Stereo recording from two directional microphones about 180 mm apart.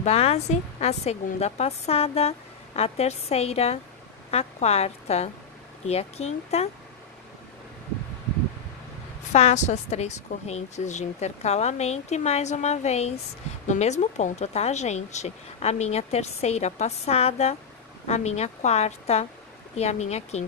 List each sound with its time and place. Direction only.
0.0 s a woman's voice: 35° left (ahead or behind)
9.3 s speech: 40° left (ahead or behind)